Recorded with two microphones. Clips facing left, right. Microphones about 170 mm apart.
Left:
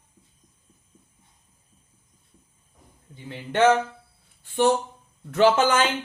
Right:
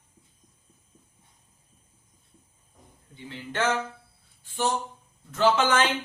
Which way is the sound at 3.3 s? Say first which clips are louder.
Left 8 dB; 55° left (ahead or behind).